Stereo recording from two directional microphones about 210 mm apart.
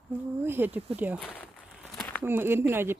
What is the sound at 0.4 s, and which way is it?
Speech, 10° right (ahead or behind).